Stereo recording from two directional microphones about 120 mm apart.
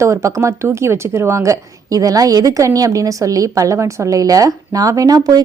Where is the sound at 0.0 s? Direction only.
25° right (ahead or behind).